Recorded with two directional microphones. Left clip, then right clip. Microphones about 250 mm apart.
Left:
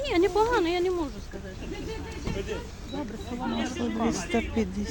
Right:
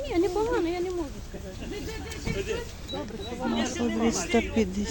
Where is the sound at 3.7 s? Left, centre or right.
Centre.